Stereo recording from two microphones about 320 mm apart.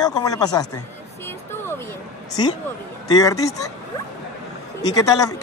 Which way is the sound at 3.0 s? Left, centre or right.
Centre.